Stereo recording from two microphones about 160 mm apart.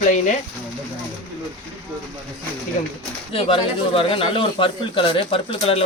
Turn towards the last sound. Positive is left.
turn(degrees=35)  # may be behind; listen again after turning